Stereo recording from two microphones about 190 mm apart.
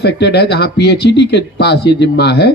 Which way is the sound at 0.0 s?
60° left (ahead or behind).